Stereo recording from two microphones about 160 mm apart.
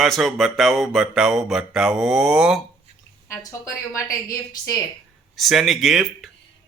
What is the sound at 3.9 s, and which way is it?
Speech, 20° left (ahead or behind).